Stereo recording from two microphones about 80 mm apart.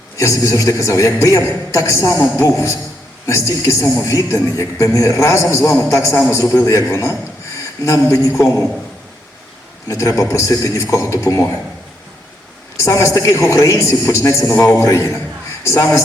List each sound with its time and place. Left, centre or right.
0.2 s a man's voice: left
9.9 s a man's voice: left
12.8 s a man's voice: left